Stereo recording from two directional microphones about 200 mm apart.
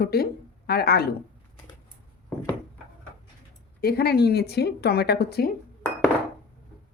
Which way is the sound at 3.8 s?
50° left (ahead or behind).